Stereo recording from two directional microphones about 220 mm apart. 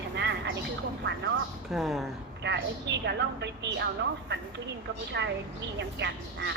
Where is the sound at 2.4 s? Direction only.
50° right (ahead or behind).